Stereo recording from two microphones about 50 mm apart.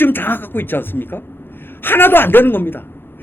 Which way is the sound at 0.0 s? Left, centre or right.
Left.